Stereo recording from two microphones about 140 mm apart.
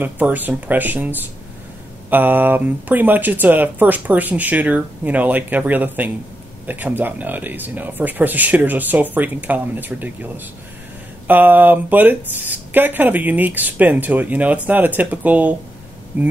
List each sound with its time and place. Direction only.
0.0 s speech: 10° right (ahead or behind)